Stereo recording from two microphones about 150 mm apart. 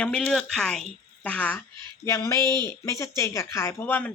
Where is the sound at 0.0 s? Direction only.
5° left (ahead or behind).